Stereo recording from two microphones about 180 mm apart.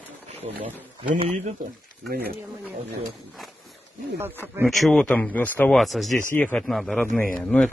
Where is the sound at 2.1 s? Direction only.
55° right (ahead or behind).